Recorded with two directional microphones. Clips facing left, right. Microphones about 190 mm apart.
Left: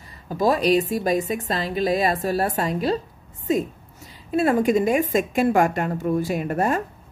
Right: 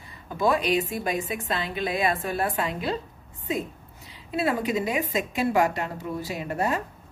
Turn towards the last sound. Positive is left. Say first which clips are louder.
# left 5 dB
turn(degrees=50)  # may be behind; listen again after turning